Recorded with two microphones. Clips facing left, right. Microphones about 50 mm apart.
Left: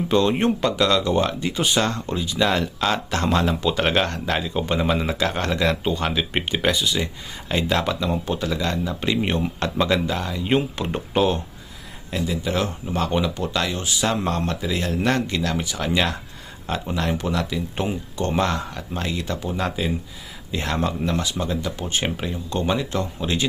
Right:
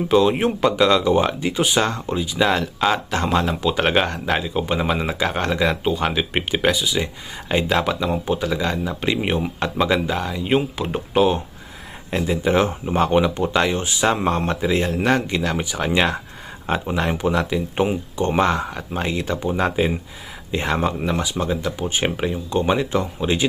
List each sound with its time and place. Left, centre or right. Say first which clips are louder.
0.1 s speech: right 2 dB; centre
7.0 s speech: right 1 dB; centre
7.7 s speech: right 1 dB; centre
12.1 s speech: right 5 dB; right
14.8 s speech: right 2 dB; centre; by 20.0 s right
20.7 s speech: right 2 dB; centre